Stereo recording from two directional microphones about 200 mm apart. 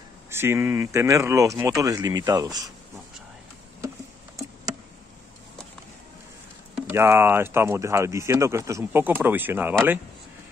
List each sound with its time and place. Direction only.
0.3 s speech: 10° right (ahead or behind)
6.7 s speech: 10° right (ahead or behind)